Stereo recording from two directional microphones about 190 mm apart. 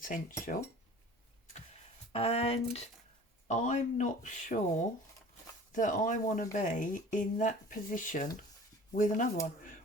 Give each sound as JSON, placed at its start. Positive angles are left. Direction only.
{"t": 0.0, "sound": "speech", "side_deg": 45}
{"t": 2.1, "sound": "speech", "side_deg": 30}